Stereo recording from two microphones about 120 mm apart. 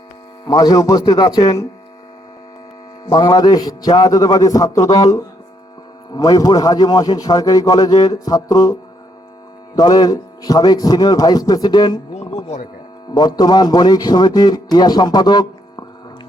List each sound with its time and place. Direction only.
0.4 s a man's voice: 35° left (ahead or behind)
3.1 s a man's voice: 30° left (ahead or behind)
13.1 s a man's voice: 35° left (ahead or behind)